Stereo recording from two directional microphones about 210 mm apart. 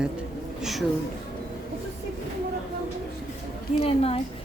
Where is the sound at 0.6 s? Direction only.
Centre (ahead or behind).